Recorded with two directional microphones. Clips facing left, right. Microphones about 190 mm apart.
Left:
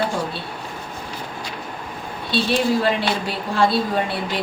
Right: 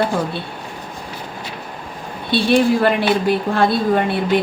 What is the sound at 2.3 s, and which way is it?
A woman's voice, 55° right (ahead or behind).